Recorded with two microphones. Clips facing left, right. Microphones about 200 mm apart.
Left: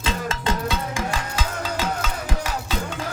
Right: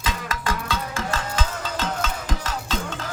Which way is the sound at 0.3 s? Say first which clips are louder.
Even; 25° left (ahead or behind).